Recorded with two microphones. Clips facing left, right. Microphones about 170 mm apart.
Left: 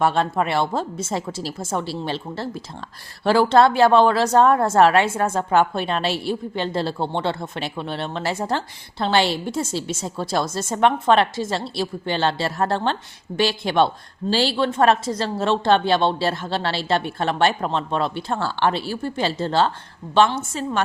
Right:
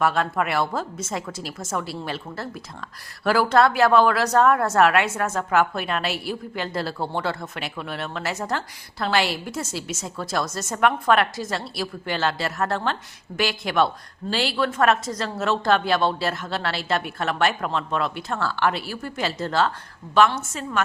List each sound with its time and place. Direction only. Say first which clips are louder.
0.0 s a woman's voice: left 2 dB; 30° left (ahead or behind)